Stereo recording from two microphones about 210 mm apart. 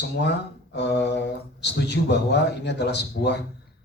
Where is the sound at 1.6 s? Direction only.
55° left (ahead or behind).